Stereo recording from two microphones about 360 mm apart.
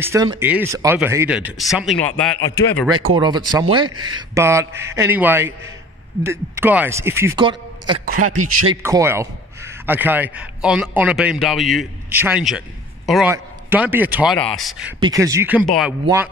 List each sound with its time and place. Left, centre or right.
0.0 s speech: centre
3.2 s a man's voice: centre
8.8 s a man's voice: centre